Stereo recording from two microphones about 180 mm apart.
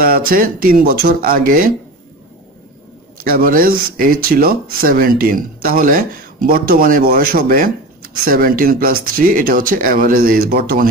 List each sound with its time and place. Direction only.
0.0 s speech: 55° right (ahead or behind)
3.3 s speech: 55° right (ahead or behind)